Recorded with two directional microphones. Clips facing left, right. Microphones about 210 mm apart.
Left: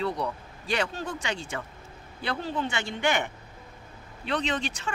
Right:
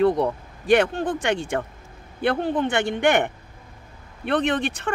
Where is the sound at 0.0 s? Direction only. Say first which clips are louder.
Right 10 dB; 55° right (ahead or behind).